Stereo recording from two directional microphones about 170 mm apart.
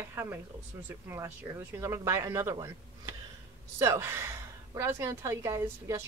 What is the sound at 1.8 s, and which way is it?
Speech, 15° right (ahead or behind).